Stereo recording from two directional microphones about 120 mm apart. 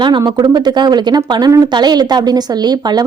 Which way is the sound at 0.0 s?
35° right (ahead or behind).